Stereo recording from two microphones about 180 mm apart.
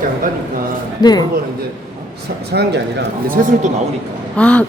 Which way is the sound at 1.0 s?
20° left (ahead or behind).